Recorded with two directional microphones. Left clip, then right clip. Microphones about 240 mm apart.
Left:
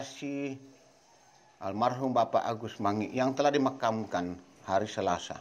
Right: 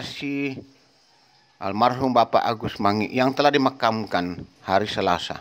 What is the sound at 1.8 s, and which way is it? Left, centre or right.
A man's voice, right.